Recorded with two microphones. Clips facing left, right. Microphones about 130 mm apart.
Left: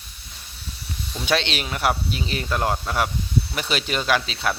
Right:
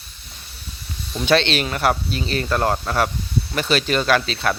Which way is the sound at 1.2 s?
10° left (ahead or behind).